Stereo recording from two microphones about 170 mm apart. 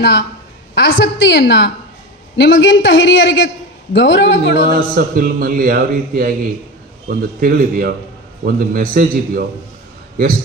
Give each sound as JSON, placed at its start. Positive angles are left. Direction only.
{"t": 0.0, "sound": "a woman's voice", "side_deg": 85}
{"t": 4.7, "sound": "a man's voice", "side_deg": -55}